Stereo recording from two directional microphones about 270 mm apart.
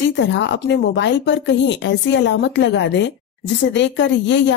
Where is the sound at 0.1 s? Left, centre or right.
Left.